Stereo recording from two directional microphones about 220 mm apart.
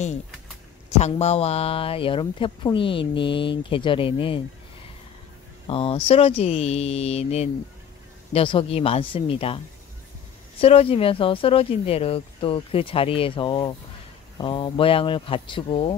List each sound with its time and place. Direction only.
0.9 s speech: 30° left (ahead or behind)
5.7 s speech: 25° left (ahead or behind)
10.6 s speech: 25° left (ahead or behind)